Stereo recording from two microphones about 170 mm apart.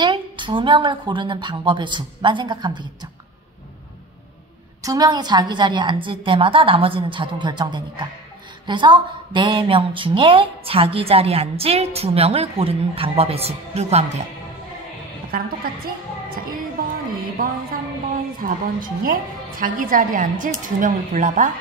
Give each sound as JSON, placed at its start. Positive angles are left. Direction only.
{"t": 0.0, "sound": "a woman's voice", "side_deg": -30}
{"t": 4.8, "sound": "a woman's voice", "side_deg": -20}
{"t": 15.3, "sound": "a woman's voice", "side_deg": -60}
{"t": 17.4, "sound": "a woman's voice", "side_deg": -55}